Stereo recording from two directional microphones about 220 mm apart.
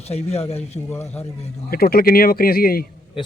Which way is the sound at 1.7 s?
45° left (ahead or behind).